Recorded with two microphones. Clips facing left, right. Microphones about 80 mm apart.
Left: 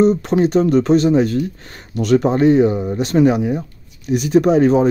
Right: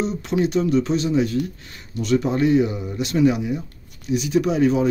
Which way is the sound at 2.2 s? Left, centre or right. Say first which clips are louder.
Left 6 dB; left.